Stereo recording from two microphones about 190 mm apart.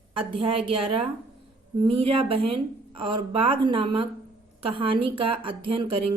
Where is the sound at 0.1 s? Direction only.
25° right (ahead or behind).